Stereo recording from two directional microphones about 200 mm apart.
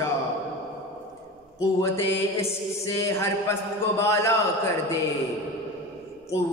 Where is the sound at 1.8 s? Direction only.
15° left (ahead or behind).